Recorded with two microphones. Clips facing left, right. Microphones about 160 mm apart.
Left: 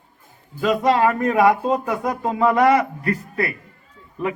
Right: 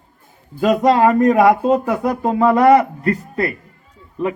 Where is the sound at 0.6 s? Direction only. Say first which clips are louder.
Right 4 dB; 40° right (ahead or behind).